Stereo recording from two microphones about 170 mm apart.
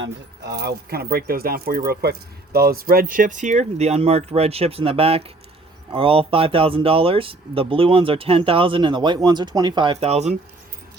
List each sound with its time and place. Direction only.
0.0 s speech: 75° right (ahead or behind); by 10.3 s 40° right (ahead or behind)